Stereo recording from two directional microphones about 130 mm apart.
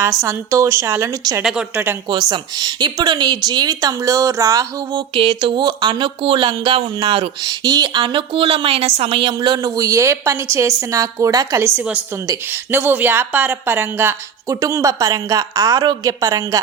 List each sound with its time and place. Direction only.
0.2 s speech: 20° right (ahead or behind)
1.4 s a woman's voice: 5° right (ahead or behind)
2.3 s speech: 30° right (ahead or behind)
5.1 s a woman's voice: 40° right (ahead or behind)
9.3 s speech: 30° right (ahead or behind)
11.8 s a woman's voice: 10° right (ahead or behind); by 16.6 s 25° right (ahead or behind)